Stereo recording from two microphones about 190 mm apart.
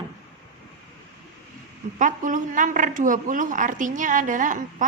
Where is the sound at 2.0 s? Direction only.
45° right (ahead or behind).